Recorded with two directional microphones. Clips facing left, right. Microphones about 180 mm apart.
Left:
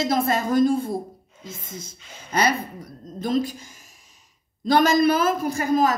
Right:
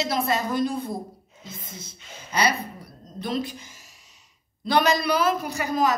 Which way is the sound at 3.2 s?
45° left (ahead or behind).